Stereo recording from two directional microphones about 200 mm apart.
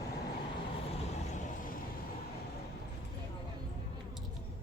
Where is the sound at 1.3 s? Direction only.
40° left (ahead or behind).